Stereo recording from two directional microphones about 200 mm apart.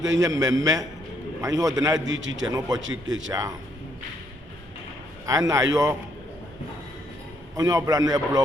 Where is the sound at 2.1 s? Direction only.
65° right (ahead or behind).